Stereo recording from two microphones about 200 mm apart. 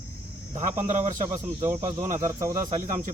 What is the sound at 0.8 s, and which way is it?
Speech, 35° right (ahead or behind).